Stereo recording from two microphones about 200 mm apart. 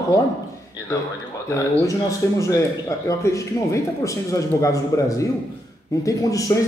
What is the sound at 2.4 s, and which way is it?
Speech, 15° left (ahead or behind).